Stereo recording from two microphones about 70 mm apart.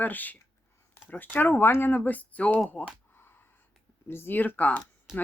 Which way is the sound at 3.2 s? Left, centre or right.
Left.